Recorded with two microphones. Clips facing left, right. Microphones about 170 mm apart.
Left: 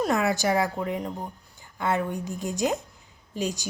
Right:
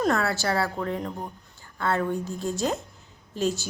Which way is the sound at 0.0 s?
15° left (ahead or behind).